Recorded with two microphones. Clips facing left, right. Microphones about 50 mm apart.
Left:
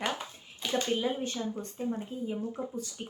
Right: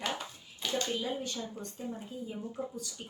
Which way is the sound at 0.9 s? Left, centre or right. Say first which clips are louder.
Left 4 dB; left.